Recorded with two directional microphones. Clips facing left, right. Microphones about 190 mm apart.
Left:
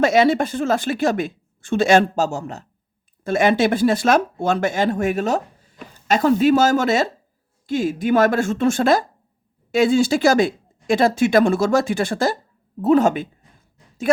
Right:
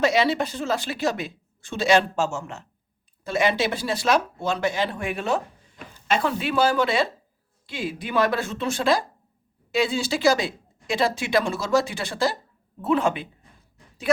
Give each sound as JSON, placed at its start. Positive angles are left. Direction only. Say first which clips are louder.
{"t": 0.0, "sound": "speech", "louder": "left 5 dB", "side_deg": 50}
{"t": 3.2, "sound": "speech", "louder": "left 6 dB", "side_deg": 50}